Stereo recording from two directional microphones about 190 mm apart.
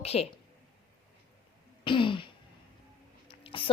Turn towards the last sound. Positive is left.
turn(degrees=30)  # may be behind; listen again after turning